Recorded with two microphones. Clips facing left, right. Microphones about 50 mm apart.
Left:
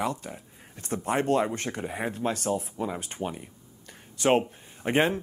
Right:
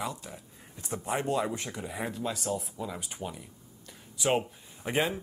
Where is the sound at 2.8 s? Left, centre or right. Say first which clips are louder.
Left 6 dB; left.